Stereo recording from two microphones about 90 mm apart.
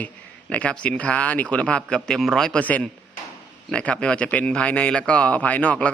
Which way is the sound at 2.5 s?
15° left (ahead or behind).